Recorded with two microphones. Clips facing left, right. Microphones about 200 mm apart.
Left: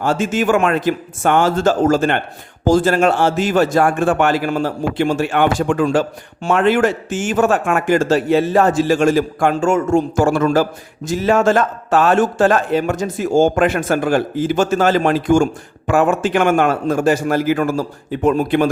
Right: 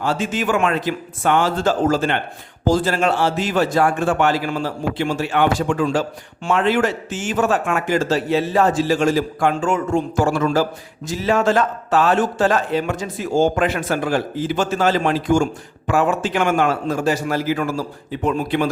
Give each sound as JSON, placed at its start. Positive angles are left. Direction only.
{"t": 0.0, "sound": "a man's voice", "side_deg": 45}